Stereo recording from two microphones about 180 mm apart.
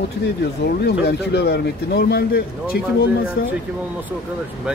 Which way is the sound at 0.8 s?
65° left (ahead or behind).